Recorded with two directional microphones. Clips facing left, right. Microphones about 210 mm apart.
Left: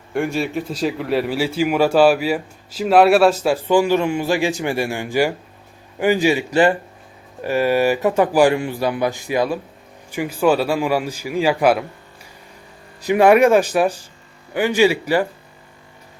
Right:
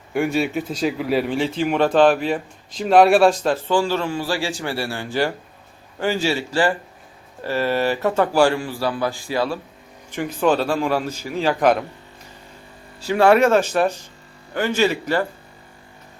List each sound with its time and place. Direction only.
0.1 s speech: centre (ahead or behind)